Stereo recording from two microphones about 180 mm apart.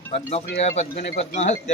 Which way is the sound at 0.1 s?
35° left (ahead or behind).